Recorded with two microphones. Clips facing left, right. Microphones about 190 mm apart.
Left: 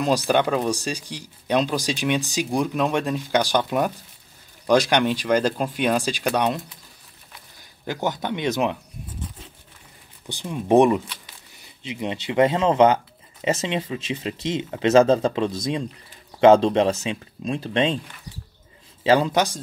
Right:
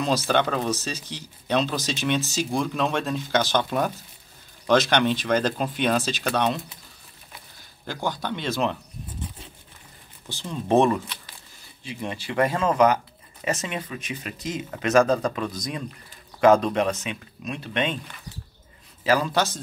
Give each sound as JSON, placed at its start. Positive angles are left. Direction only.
{"t": 0.0, "sound": "speech", "side_deg": 10}
{"t": 7.8, "sound": "speech", "side_deg": 20}
{"t": 10.2, "sound": "speech", "side_deg": 15}
{"t": 19.0, "sound": "speech", "side_deg": 25}